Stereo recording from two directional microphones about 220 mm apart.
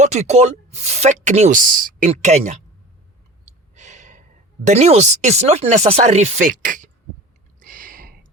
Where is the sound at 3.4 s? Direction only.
30° right (ahead or behind).